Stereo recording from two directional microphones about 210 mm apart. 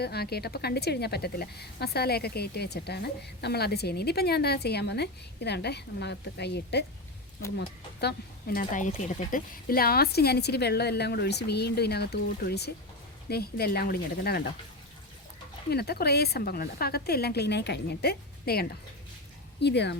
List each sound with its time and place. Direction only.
0.0 s a woman's voice: 50° left (ahead or behind)
8.0 s a woman's voice: 45° left (ahead or behind)
15.7 s a woman's voice: 50° left (ahead or behind)